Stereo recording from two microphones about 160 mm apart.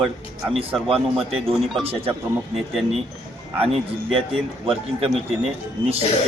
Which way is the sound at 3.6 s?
35° right (ahead or behind).